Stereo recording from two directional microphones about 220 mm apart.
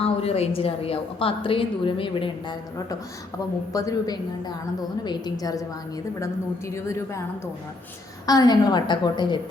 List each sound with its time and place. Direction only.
0.0 s a woman's voice: 25° left (ahead or behind)
8.3 s a woman's voice: 15° left (ahead or behind)